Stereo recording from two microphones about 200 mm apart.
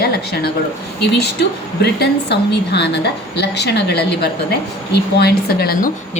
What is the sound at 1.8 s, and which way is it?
A woman's voice, 55° left (ahead or behind).